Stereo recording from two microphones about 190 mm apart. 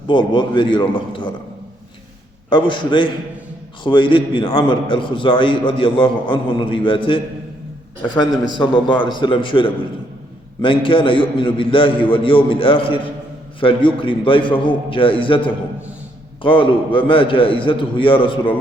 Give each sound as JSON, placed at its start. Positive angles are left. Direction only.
{"t": 0.1, "sound": "a man's voice", "side_deg": 25}
{"t": 2.5, "sound": "a man's voice", "side_deg": 25}
{"t": 8.5, "sound": "a man's voice", "side_deg": 25}